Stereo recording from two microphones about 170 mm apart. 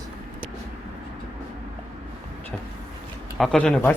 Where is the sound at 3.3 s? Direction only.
Centre (ahead or behind).